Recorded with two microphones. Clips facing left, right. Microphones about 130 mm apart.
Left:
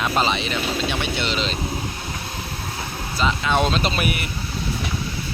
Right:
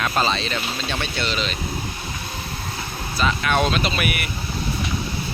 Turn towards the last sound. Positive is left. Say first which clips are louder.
# left 1 dB
turn(degrees=30)  # may be behind; listen again after turning